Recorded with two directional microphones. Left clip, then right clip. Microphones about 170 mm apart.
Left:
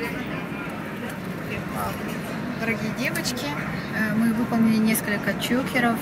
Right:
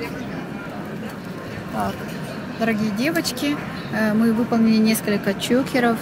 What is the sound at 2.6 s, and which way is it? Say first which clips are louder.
Speech: right 5 dB; 90° right.